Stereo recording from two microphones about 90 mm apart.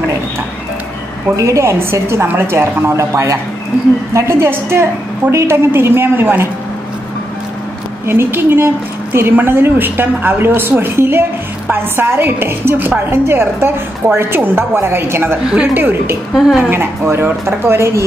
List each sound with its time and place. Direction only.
1.3 s a woman's voice: 35° right (ahead or behind)
8.1 s a woman's voice: 25° right (ahead or behind)
15.4 s a woman's voice: 10° right (ahead or behind)
15.7 s a woman's voice: 25° right (ahead or behind)
16.3 s a woman's voice: 5° right (ahead or behind)
16.6 s a woman's voice: 30° right (ahead or behind)